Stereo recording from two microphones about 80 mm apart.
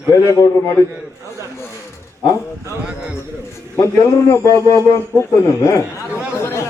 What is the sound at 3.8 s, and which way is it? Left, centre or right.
Speech, left.